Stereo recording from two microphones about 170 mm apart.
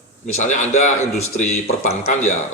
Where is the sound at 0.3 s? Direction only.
45° left (ahead or behind).